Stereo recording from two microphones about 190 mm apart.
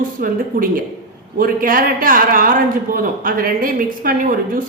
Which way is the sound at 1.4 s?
50° right (ahead or behind).